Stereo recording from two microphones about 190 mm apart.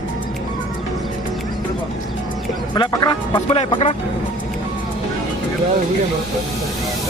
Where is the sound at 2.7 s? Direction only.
25° left (ahead or behind).